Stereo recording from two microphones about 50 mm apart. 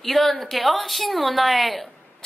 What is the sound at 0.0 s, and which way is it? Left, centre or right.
A woman's voice, centre.